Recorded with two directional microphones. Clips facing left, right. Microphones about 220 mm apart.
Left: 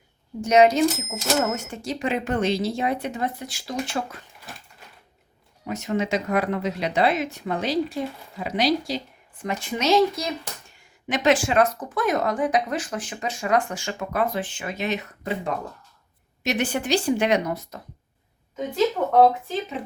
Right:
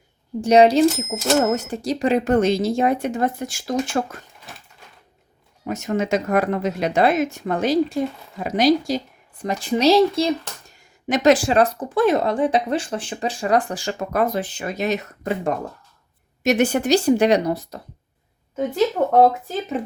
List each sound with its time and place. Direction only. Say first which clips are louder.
0.4 s a woman's voice: right 4 dB; 30° right (ahead or behind)
5.6 s speech: right 3 dB; 45° right (ahead or behind)
9.4 s a woman's voice: right 7 dB; 35° right (ahead or behind)
19.0 s speech: right 4 dB; 45° right (ahead or behind)